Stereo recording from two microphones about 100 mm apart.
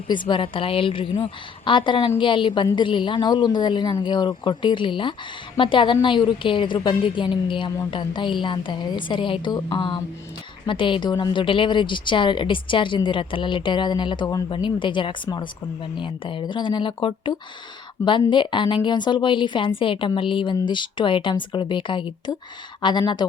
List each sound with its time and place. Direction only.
0.1 s a woman's voice: 50° left (ahead or behind)
14.5 s a woman's voice: 55° left (ahead or behind)